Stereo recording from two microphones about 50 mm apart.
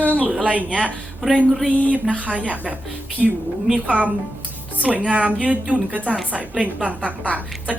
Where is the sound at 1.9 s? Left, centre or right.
Right.